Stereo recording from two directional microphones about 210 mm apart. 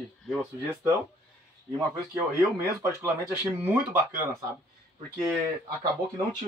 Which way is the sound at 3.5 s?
10° right (ahead or behind).